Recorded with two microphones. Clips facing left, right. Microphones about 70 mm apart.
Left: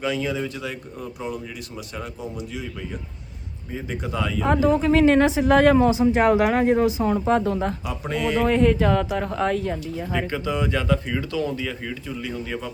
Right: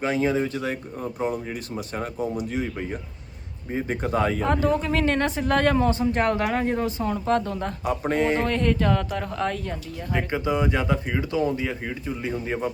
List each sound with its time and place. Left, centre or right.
0.0 s a man's voice: right
4.4 s speech: centre
7.9 s a man's voice: right
8.4 s speech: centre
10.3 s speech: right